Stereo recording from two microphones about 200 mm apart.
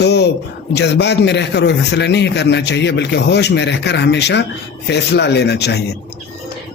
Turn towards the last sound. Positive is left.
turn(degrees=55)  # may be behind; listen again after turning